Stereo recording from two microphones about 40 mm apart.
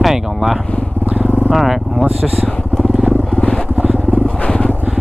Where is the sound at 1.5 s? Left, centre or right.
Centre.